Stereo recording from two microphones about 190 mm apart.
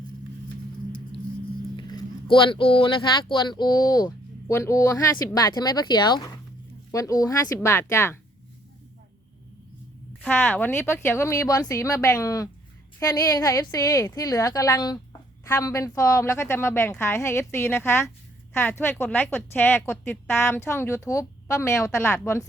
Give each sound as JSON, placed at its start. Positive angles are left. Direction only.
{"t": 1.7, "sound": "a sound", "side_deg": 20}
{"t": 2.3, "sound": "a woman's voice", "side_deg": 25}
{"t": 10.2, "sound": "a woman's voice", "side_deg": 5}